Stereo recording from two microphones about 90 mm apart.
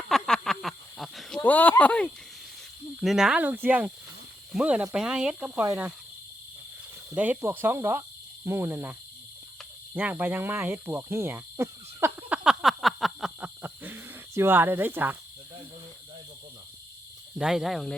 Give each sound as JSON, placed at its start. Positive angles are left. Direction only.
{"t": 0.1, "sound": "a sound", "side_deg": 5}
{"t": 1.4, "sound": "speech", "side_deg": 15}
{"t": 3.0, "sound": "speech", "side_deg": -5}
{"t": 3.4, "sound": "cricket", "side_deg": -20}
{"t": 4.5, "sound": "speech", "side_deg": -10}
{"t": 7.4, "sound": "cricket", "side_deg": -25}
{"t": 12.3, "sound": "a sound", "side_deg": -10}
{"t": 13.4, "sound": "a sound", "side_deg": -20}
{"t": 17.3, "sound": "speech", "side_deg": -5}